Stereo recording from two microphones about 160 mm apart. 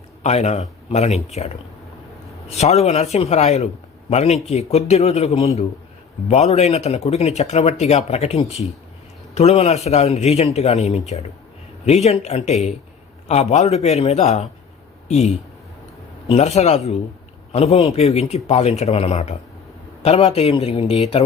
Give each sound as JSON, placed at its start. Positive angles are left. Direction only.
{"t": 0.2, "sound": "speech", "side_deg": 45}